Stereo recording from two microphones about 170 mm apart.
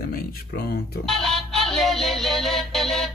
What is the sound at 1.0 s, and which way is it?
Music, centre (ahead or behind).